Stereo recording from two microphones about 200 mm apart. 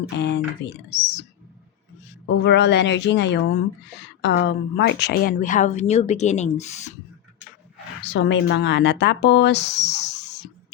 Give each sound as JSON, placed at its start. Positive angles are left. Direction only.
{"t": 0.2, "sound": "speech", "side_deg": 60}
{"t": 2.4, "sound": "a woman's voice", "side_deg": 60}
{"t": 8.0, "sound": "speech", "side_deg": 60}